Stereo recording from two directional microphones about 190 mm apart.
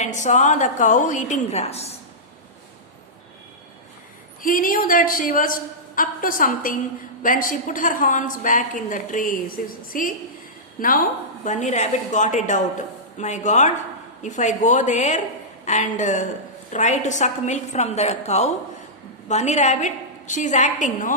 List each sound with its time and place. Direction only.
0.0 s a woman's voice: 40° left (ahead or behind)
4.4 s a woman's voice: 45° left (ahead or behind)